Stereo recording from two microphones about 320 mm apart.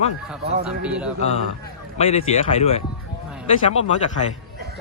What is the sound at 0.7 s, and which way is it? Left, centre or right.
Speech, centre.